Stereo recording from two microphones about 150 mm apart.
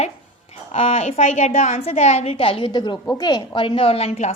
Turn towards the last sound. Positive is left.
turn(degrees=45)  # may be behind; listen again after turning